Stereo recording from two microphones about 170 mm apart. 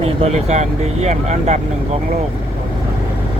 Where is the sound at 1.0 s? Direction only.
40° right (ahead or behind).